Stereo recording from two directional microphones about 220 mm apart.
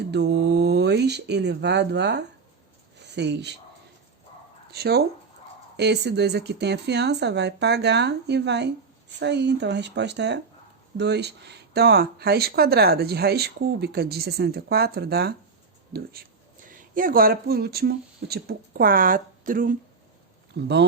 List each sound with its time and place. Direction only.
0.0 s speech: 50° right (ahead or behind)
4.7 s speech: 45° right (ahead or behind)
20.6 s speech: 50° right (ahead or behind)